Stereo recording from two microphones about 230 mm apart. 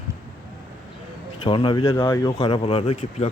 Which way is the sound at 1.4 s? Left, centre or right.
Left.